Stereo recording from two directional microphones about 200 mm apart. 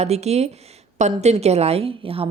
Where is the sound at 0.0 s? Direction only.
35° right (ahead or behind).